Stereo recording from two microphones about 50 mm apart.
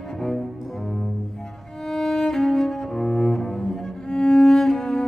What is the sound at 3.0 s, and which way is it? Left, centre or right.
Cello, centre.